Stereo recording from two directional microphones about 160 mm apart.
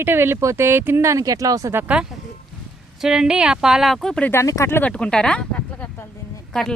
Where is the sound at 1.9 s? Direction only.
5° right (ahead or behind).